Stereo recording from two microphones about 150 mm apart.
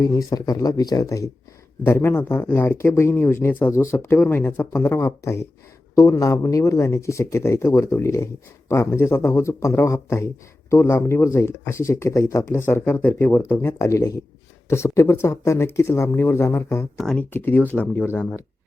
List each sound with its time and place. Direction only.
0.0 s speech: 25° left (ahead or behind)
17.0 s speech: 5° left (ahead or behind)